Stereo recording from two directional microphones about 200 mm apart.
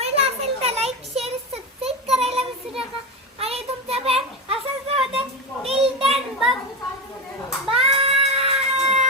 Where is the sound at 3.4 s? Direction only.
30° right (ahead or behind).